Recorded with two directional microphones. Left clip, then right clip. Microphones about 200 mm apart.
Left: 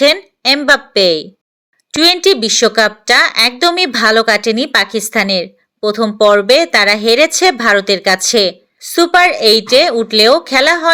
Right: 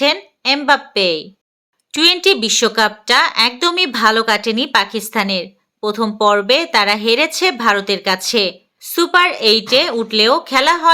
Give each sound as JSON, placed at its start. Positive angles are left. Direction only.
{"t": 0.0, "sound": "a woman's voice", "side_deg": 20}